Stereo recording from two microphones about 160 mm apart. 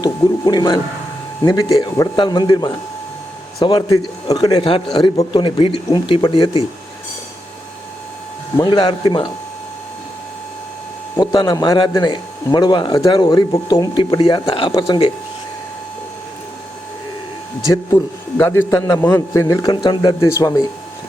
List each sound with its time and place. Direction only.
0.0 s a man's voice: 25° left (ahead or behind)
8.5 s speech: 30° left (ahead or behind)
11.2 s speech: 25° left (ahead or behind)
17.7 s speech: 15° left (ahead or behind)